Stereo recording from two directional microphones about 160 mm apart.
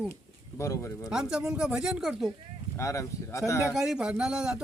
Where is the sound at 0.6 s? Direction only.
20° left (ahead or behind).